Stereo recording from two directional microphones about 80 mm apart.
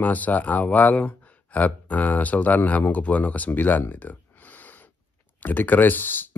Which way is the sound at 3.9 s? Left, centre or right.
Left.